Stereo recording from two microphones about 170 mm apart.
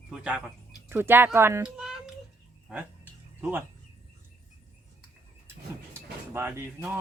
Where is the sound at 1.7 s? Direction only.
5° right (ahead or behind).